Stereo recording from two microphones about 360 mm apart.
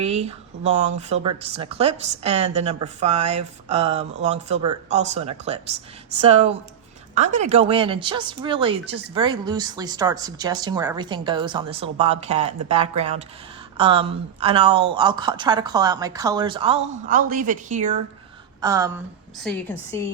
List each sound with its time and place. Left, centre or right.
0.0 s a woman's voice: centre
19.4 s a woman's voice: centre